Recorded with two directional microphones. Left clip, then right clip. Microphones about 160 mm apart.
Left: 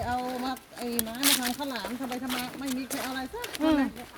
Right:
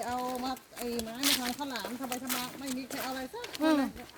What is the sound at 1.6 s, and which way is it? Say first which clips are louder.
Speech: left 3 dB; centre (ahead or behind).